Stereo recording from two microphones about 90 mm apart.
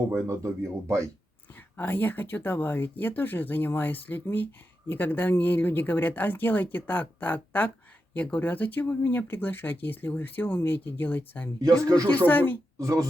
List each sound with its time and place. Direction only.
0.1 s speech: 35° right (ahead or behind)
1.7 s speech: 20° left (ahead or behind)
11.6 s speech: 40° right (ahead or behind)
12.1 s speech: 20° left (ahead or behind)
12.8 s speech: 40° right (ahead or behind)